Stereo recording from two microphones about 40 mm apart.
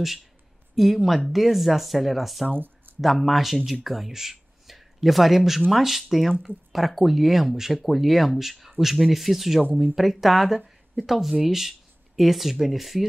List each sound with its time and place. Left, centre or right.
0.7 s speech: centre
2.5 s a sound: right
3.0 s speech: centre